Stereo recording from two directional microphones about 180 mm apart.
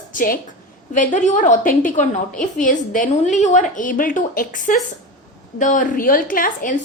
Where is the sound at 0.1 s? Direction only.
50° left (ahead or behind).